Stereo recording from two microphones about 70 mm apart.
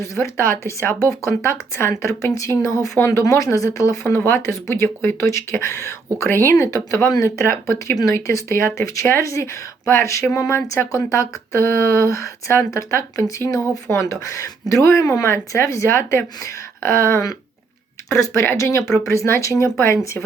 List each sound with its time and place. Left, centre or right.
0.0 s speech: left
4.1 s speech: left